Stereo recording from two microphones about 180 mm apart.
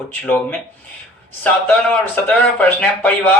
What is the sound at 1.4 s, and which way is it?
Speech, 10° left (ahead or behind).